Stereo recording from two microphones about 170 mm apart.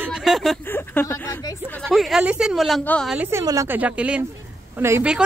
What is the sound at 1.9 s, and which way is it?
A woman's voice, centre (ahead or behind).